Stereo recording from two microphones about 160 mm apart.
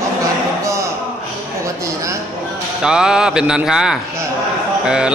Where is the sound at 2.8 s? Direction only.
5° right (ahead or behind).